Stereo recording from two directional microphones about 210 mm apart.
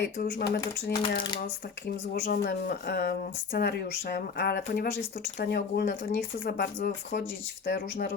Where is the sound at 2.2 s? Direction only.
45° left (ahead or behind).